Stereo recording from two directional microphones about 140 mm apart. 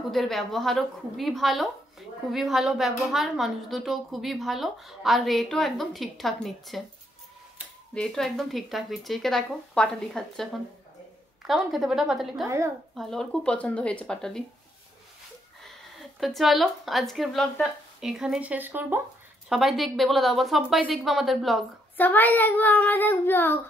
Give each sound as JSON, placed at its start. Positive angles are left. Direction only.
{"t": 0.1, "sound": "a woman's voice", "side_deg": 0}
{"t": 7.9, "sound": "a woman's voice", "side_deg": 5}
{"t": 12.4, "sound": "a woman's voice", "side_deg": -20}
{"t": 12.9, "sound": "a woman's voice", "side_deg": 5}
{"t": 16.2, "sound": "a woman's voice", "side_deg": 0}
{"t": 19.5, "sound": "a woman's voice", "side_deg": 0}
{"t": 21.9, "sound": "speech", "side_deg": 10}